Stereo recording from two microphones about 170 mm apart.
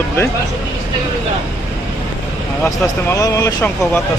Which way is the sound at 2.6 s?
20° left (ahead or behind).